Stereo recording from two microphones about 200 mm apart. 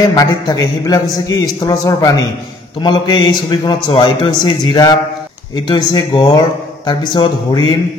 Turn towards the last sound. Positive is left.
turn(degrees=25)  # may be behind; listen again after turning